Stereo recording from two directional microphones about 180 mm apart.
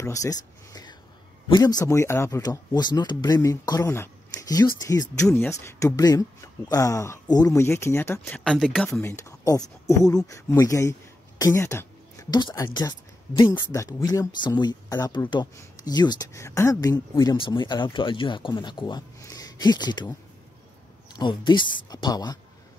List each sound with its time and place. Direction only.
0.0 s speech: 20° left (ahead or behind)
8.5 s speech: centre (ahead or behind)
9.0 s speech: 15° left (ahead or behind)
21.1 s speech: 25° left (ahead or behind)